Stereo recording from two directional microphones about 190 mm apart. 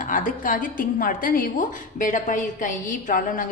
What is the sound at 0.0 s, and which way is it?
Speech, 45° left (ahead or behind).